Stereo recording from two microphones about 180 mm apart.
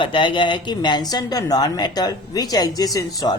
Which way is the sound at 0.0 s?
25° left (ahead or behind).